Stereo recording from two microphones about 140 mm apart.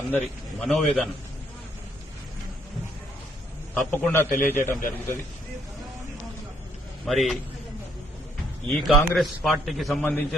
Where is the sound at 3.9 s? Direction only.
15° left (ahead or behind).